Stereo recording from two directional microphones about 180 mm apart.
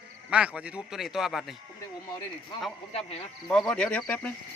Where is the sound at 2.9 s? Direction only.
35° left (ahead or behind).